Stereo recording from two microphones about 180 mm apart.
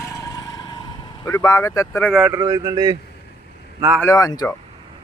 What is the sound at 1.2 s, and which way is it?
Speech, 15° left (ahead or behind).